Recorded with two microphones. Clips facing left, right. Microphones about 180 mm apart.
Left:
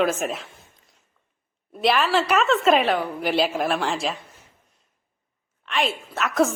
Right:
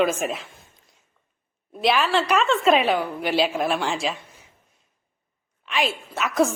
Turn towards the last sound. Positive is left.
turn(degrees=0)  # may be behind; listen again after turning